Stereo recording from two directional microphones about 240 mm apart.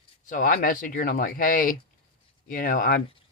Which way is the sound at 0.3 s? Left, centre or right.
Left.